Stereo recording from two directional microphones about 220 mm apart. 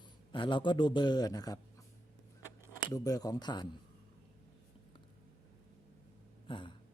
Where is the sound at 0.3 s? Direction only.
20° left (ahead or behind).